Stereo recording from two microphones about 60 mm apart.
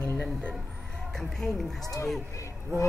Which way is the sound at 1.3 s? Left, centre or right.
Centre.